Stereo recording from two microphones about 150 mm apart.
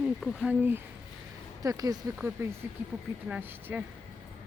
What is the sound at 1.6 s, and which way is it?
Speech, 25° right (ahead or behind).